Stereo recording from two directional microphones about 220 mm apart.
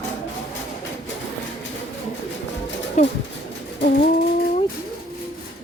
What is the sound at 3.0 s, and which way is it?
Bird, 30° left (ahead or behind).